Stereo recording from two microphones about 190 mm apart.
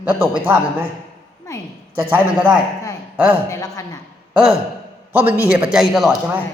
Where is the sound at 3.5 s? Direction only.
15° left (ahead or behind).